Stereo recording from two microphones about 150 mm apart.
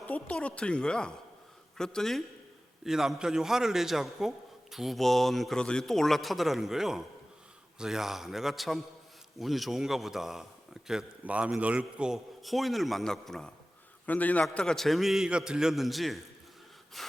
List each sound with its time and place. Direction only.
0.1 s a man's voice: 10° left (ahead or behind)